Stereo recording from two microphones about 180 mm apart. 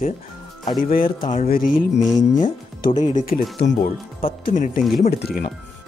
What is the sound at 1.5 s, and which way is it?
Speech, 50° left (ahead or behind).